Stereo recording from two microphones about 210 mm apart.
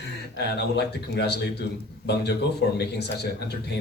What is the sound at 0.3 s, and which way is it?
Speech, 50° left (ahead or behind).